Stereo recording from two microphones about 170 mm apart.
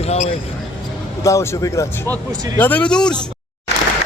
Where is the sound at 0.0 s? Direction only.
40° left (ahead or behind).